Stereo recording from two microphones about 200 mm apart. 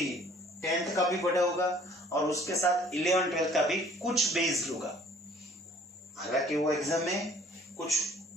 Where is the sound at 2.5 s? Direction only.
15° left (ahead or behind).